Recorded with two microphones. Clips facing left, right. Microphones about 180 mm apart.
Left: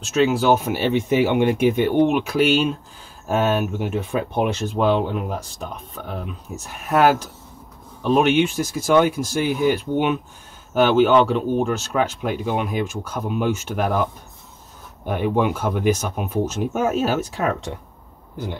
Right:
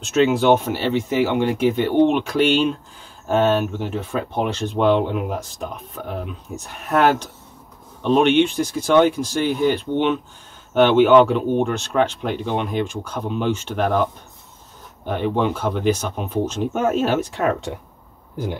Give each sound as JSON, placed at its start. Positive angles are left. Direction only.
{"t": 0.0, "sound": "speech", "side_deg": 0}
{"t": 0.7, "sound": "speech", "side_deg": 15}
{"t": 4.6, "sound": "speech", "side_deg": 0}
{"t": 15.0, "sound": "speech", "side_deg": 10}